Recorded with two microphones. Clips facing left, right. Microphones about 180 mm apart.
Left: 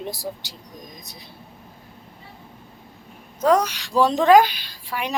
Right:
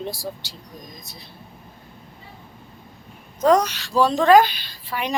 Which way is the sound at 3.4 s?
10° left (ahead or behind).